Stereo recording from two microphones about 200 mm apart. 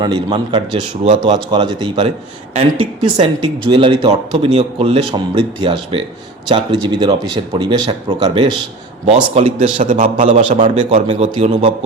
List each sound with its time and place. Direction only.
0.0 s a man's voice: 20° right (ahead or behind)